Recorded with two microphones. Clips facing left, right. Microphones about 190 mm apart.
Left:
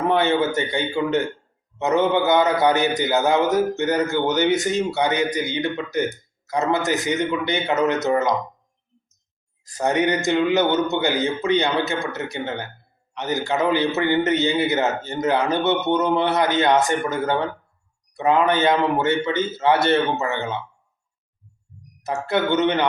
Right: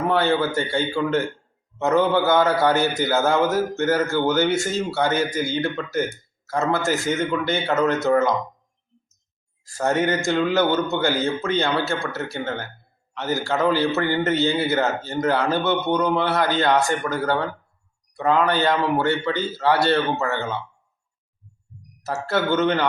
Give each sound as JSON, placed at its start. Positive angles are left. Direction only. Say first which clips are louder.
{"t": 0.1, "sound": "a man's voice", "louder": "left 1 dB", "side_deg": 20}
{"t": 9.6, "sound": "a man's voice", "louder": "left 1 dB", "side_deg": 20}
{"t": 22.0, "sound": "a man's voice", "louder": "left 1 dB", "side_deg": 15}